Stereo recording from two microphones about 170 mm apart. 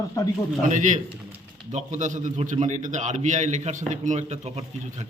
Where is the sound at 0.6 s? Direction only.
45° right (ahead or behind).